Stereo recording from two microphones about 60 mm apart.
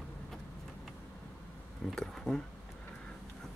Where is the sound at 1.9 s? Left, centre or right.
Centre.